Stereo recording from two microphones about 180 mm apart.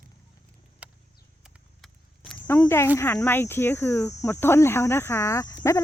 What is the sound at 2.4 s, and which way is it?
Speech, 10° left (ahead or behind).